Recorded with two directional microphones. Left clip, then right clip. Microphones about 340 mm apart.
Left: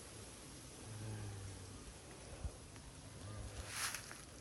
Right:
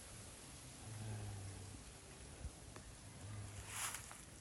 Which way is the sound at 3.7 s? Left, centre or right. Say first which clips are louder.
Left 3 dB; centre.